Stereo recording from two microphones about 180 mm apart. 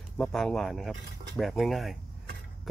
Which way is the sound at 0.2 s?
5° left (ahead or behind).